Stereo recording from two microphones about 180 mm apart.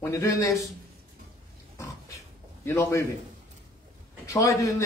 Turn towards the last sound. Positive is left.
turn(degrees=15)  # may be behind; listen again after turning